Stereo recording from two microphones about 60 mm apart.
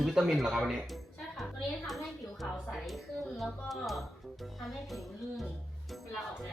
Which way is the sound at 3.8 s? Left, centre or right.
Centre.